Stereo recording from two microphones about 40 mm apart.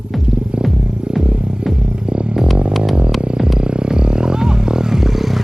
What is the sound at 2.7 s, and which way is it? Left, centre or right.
Vehicle, centre.